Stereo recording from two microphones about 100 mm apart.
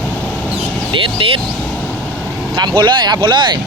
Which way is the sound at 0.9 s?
55° right (ahead or behind).